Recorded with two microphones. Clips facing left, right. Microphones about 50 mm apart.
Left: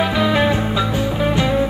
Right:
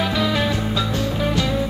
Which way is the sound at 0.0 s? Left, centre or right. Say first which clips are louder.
Left 4 dB; centre.